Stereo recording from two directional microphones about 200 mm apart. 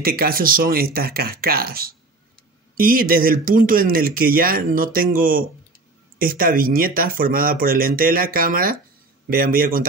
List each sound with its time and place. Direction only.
0.0 s speech: 50° right (ahead or behind)